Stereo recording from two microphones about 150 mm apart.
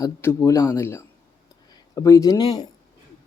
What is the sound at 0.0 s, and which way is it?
Speech, 20° left (ahead or behind).